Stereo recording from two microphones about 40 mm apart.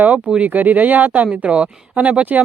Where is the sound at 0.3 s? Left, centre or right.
Right.